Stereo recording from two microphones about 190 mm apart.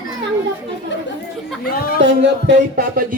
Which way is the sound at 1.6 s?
50° left (ahead or behind).